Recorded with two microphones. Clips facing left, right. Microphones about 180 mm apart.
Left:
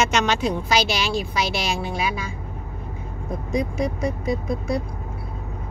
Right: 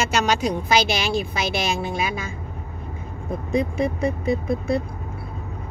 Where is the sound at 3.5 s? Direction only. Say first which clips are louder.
Right 2 dB; 60° right (ahead or behind).